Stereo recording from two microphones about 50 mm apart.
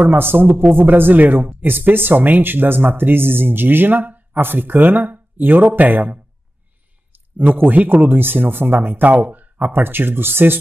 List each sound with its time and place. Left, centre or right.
0.0 s a man's voice: right
7.5 s a man's voice: right